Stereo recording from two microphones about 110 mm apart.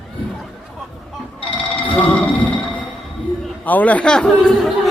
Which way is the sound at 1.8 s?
10° left (ahead or behind).